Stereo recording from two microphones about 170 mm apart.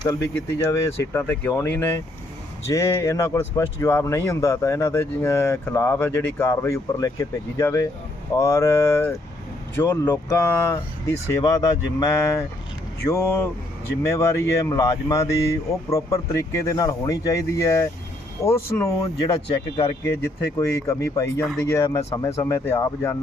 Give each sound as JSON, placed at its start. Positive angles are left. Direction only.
{"t": 0.0, "sound": "speech", "side_deg": 25}
{"t": 0.6, "sound": "speech", "side_deg": 10}